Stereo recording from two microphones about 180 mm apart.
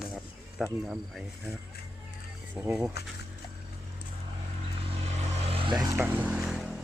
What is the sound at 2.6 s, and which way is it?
Speech, 15° right (ahead or behind).